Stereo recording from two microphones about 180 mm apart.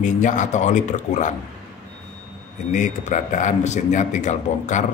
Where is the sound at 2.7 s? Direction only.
45° left (ahead or behind).